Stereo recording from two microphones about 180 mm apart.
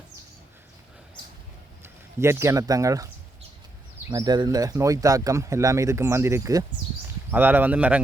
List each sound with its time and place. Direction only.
1.8 s speech: 15° right (ahead or behind)
4.1 s speech: 25° right (ahead or behind)